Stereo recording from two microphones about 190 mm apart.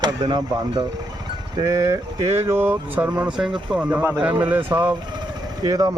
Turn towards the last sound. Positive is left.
turn(degrees=-20)  # may be behind; listen again after turning